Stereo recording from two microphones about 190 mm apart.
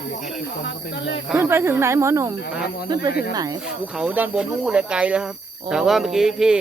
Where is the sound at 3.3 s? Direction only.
20° right (ahead or behind).